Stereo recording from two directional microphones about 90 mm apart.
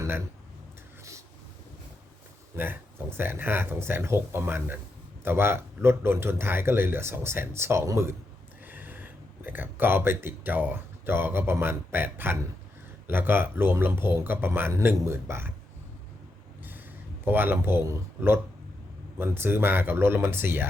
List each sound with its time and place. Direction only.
2.6 s speech: 25° right (ahead or behind)
8.6 s speech: 20° right (ahead or behind)
17.2 s speech: 25° right (ahead or behind)